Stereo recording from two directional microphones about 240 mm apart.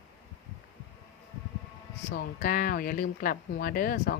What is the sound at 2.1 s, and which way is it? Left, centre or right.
Speech, left.